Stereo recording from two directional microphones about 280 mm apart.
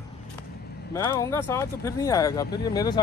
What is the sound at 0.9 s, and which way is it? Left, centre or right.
Speech, centre.